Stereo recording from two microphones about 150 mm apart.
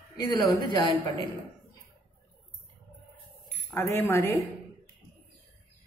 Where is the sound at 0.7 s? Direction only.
30° left (ahead or behind).